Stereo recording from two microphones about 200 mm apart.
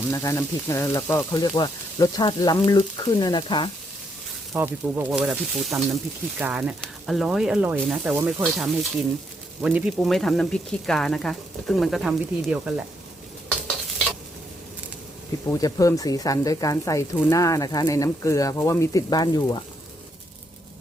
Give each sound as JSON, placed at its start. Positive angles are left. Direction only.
{"t": 0.1, "sound": "speech", "side_deg": 15}
{"t": 4.5, "sound": "speech", "side_deg": -10}
{"t": 15.4, "sound": "speech", "side_deg": 15}